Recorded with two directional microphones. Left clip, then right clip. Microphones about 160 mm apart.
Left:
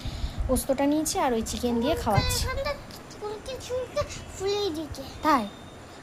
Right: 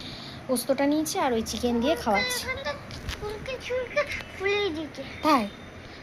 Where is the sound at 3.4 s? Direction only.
30° left (ahead or behind).